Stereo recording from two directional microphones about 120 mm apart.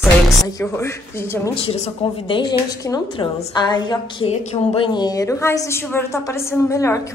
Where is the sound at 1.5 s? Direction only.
55° left (ahead or behind).